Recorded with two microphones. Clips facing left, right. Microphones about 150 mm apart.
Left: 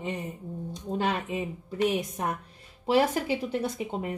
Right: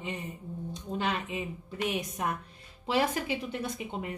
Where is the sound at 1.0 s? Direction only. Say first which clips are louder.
Left 3 dB; 45° left (ahead or behind).